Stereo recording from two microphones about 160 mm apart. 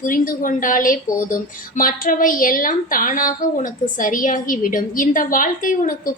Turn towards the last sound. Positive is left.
turn(degrees=60)  # may be behind; listen again after turning